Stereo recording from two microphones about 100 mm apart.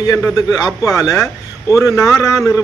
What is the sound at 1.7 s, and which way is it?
Speech, 25° right (ahead or behind).